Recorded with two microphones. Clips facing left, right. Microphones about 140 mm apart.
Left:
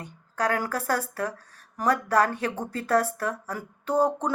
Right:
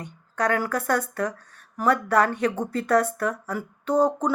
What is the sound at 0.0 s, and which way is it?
A woman's voice, 35° left (ahead or behind).